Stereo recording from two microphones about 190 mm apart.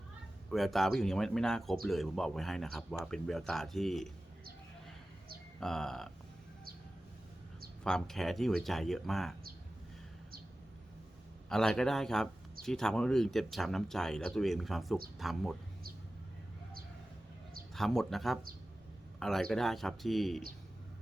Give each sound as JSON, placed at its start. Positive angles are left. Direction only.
{"t": 0.5, "sound": "speech", "side_deg": 0}
{"t": 5.5, "sound": "speech", "side_deg": 5}
{"t": 7.9, "sound": "speech", "side_deg": 5}
{"t": 11.4, "sound": "speech", "side_deg": 5}
{"t": 17.7, "sound": "speech", "side_deg": 0}